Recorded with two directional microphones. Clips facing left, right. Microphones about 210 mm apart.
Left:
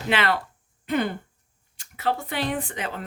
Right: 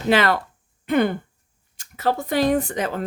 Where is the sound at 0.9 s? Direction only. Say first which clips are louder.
Right 5 dB; 55° right (ahead or behind).